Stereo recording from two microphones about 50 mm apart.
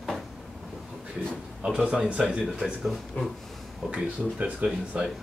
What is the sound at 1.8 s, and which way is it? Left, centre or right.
Speech, centre.